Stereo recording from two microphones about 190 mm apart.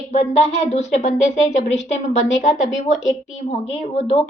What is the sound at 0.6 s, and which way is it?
A woman's voice, 40° left (ahead or behind).